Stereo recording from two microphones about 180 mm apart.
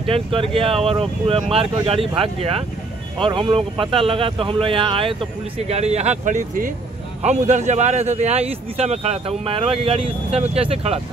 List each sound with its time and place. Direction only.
0.0 s speech: 30° right (ahead or behind)